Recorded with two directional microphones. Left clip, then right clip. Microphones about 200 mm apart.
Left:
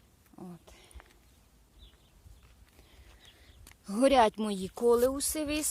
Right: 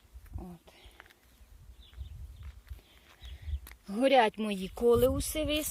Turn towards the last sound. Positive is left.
turn(degrees=5)  # may be behind; listen again after turning